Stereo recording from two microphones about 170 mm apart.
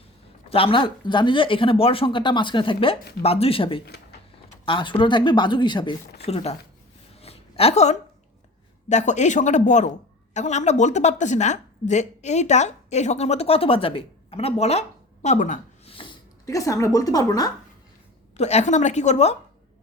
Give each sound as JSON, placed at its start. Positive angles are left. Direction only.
{"t": 0.5, "sound": "speech", "side_deg": 30}
{"t": 7.1, "sound": "a sound", "side_deg": 35}
{"t": 8.9, "sound": "speech", "side_deg": 45}
{"t": 15.9, "sound": "a sound", "side_deg": 30}
{"t": 16.5, "sound": "speech", "side_deg": 20}
{"t": 18.3, "sound": "speech", "side_deg": 40}